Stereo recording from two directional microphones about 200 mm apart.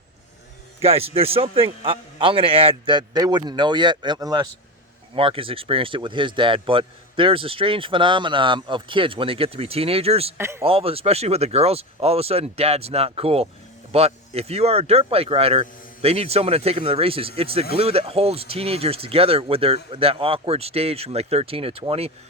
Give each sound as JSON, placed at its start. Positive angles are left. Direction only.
{"t": 0.8, "sound": "speech", "side_deg": -30}
{"t": 10.3, "sound": "speech", "side_deg": -15}
{"t": 10.6, "sound": "speech", "side_deg": -30}